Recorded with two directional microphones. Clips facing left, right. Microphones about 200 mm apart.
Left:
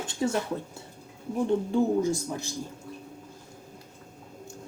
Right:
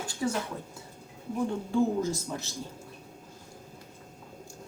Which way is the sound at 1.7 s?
15° left (ahead or behind).